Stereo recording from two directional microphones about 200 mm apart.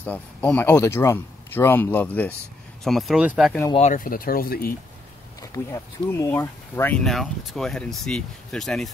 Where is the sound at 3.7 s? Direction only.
35° left (ahead or behind).